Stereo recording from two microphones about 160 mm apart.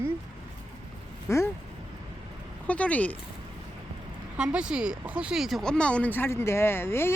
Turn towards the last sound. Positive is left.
turn(degrees=15)  # may be behind; listen again after turning